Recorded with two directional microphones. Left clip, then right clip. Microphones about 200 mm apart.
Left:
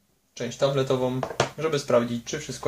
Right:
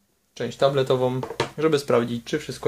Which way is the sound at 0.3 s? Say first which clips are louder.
Right 3 dB; 45° right (ahead or behind).